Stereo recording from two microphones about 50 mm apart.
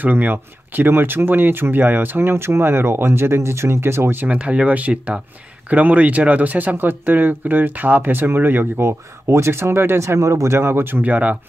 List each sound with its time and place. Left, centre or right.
0.0 s speech: right
4.3 s speech: right
8.8 s speech: right
11.0 s speech: right